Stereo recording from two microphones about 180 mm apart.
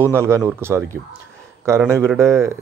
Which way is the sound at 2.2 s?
15° right (ahead or behind).